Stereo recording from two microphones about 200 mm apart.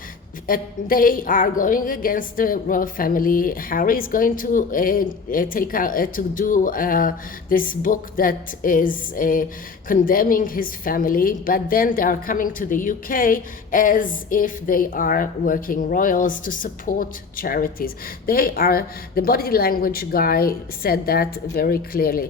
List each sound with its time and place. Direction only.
0.4 s a woman's voice: 45° left (ahead or behind)